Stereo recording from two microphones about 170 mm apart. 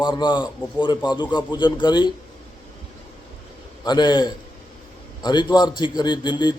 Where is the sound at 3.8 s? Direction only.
25° left (ahead or behind).